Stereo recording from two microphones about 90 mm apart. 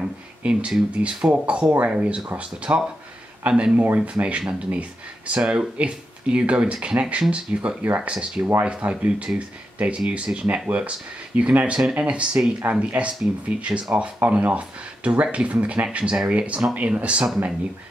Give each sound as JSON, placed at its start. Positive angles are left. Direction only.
{"t": 0.0, "sound": "speech", "side_deg": -10}